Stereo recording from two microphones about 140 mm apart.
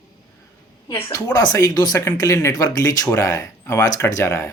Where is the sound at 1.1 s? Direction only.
25° left (ahead or behind).